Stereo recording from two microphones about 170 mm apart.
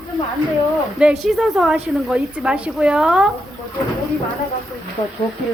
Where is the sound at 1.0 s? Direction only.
5° right (ahead or behind).